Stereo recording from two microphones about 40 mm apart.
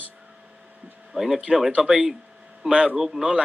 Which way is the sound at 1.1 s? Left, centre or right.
Centre.